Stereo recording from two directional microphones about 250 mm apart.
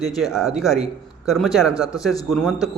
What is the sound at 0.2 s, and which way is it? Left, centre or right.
A man's voice, centre.